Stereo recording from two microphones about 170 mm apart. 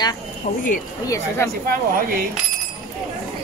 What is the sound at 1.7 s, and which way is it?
Speech, 60° right (ahead or behind).